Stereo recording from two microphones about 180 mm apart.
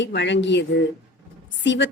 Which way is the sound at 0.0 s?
80° left.